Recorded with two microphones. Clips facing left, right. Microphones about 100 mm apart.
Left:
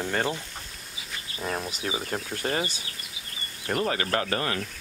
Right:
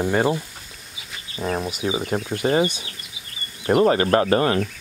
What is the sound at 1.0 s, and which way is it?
Speech, centre (ahead or behind).